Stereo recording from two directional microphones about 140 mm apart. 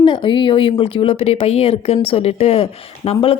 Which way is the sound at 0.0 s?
35° left (ahead or behind).